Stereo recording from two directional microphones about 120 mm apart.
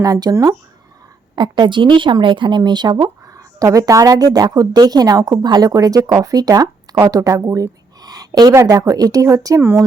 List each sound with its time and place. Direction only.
0.0 s speech: 30° right (ahead or behind)
1.4 s speech: 40° right (ahead or behind); by 9.8 s 20° right (ahead or behind)